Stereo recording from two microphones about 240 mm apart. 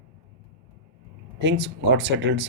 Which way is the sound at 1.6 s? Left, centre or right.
Right.